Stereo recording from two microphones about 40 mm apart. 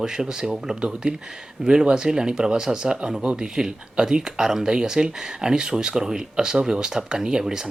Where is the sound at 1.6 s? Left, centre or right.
Centre.